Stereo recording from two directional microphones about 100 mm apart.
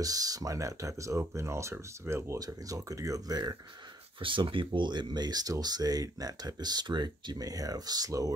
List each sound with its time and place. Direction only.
0.0 s speech: 40° right (ahead or behind)
4.2 s speech: 60° right (ahead or behind); by 8.3 s 35° right (ahead or behind)